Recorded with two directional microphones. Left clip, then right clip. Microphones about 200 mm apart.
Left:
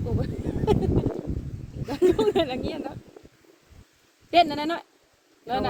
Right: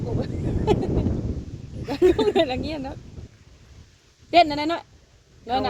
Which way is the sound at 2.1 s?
50° right (ahead or behind).